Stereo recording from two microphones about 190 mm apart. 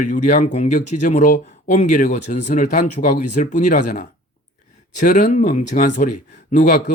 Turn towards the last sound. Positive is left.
turn(degrees=45)  # may be behind; listen again after turning